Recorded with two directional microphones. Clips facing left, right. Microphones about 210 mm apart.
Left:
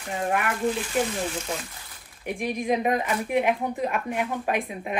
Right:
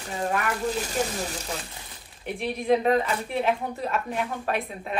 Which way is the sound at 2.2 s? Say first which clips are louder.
Left 2 dB; 15° left (ahead or behind).